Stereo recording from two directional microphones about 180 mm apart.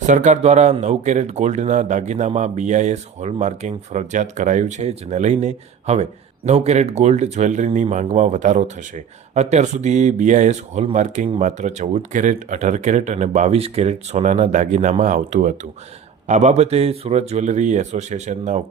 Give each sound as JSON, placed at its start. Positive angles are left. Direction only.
{"t": 0.0, "sound": "speech", "side_deg": -40}